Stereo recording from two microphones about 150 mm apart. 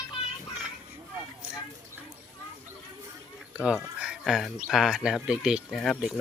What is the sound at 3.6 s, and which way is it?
Speech, 5° right (ahead or behind).